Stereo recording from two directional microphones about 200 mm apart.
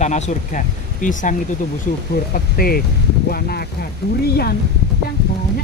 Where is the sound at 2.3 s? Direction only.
50° left (ahead or behind).